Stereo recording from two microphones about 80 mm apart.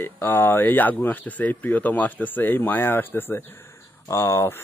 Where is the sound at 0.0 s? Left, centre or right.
Left.